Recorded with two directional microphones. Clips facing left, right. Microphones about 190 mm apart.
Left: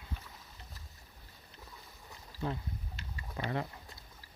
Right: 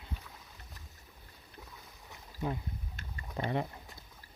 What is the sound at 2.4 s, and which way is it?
Speech, 15° right (ahead or behind).